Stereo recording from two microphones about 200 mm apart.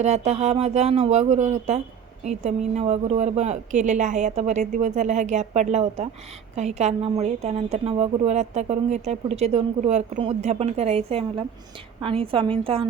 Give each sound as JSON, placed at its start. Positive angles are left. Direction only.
{"t": 0.0, "sound": "a woman's voice", "side_deg": -35}